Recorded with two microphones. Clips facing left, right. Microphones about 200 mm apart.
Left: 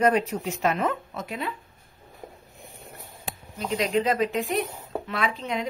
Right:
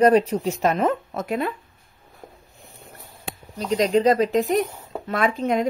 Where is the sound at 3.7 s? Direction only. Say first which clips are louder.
Right 6 dB; 40° right (ahead or behind).